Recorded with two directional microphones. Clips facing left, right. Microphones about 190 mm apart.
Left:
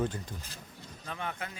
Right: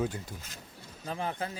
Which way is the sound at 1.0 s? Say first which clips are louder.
Right 4 dB; 30° right (ahead or behind).